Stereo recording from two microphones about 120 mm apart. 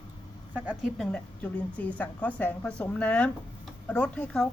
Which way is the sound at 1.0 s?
10° left (ahead or behind).